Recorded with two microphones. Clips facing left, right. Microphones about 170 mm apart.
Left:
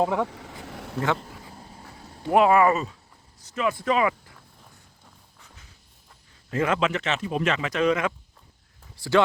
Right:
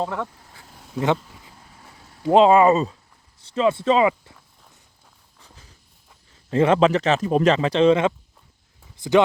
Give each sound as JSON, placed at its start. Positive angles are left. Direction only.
{"t": 0.0, "sound": "speech", "side_deg": 10}
{"t": 0.3, "sound": "vehicle", "side_deg": 85}
{"t": 0.9, "sound": "speech", "side_deg": -20}
{"t": 1.5, "sound": "vehicle", "side_deg": 35}
{"t": 2.3, "sound": "speech", "side_deg": -25}
{"t": 6.5, "sound": "speech", "side_deg": -30}